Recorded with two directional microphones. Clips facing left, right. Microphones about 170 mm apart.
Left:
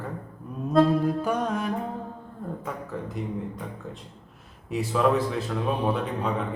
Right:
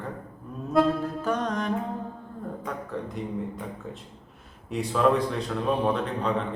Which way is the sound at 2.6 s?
Centre (ahead or behind).